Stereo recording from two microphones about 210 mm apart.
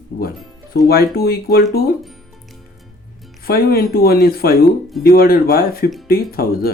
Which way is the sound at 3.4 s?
45° left (ahead or behind).